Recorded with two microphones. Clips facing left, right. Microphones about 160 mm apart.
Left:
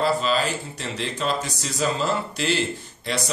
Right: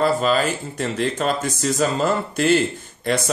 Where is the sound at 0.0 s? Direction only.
50° right (ahead or behind).